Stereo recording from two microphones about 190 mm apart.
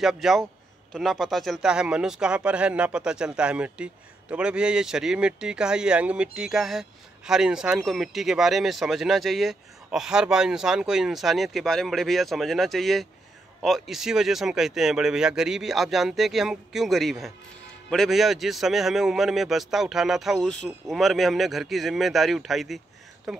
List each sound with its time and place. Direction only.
0.0 s speech: centre (ahead or behind)